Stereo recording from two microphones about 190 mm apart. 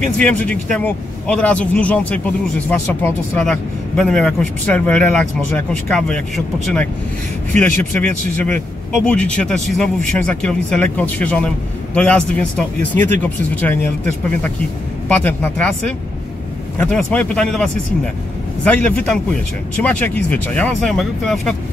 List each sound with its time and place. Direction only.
0.2 s speech: 5° left (ahead or behind)
7.6 s speech: 40° right (ahead or behind)
8.9 s speech: 5° left (ahead or behind)
15.0 s speech: 10° left (ahead or behind)
16.8 s speech: 5° left (ahead or behind)